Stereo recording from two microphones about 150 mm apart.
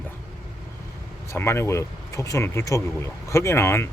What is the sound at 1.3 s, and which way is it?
Speech, 15° left (ahead or behind).